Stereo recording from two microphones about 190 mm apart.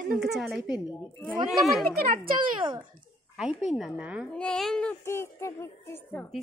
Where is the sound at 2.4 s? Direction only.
25° right (ahead or behind).